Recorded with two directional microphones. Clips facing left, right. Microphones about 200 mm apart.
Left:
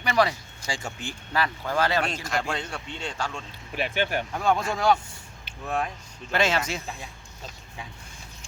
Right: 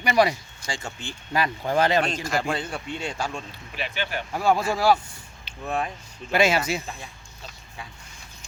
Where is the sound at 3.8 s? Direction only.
50° left (ahead or behind).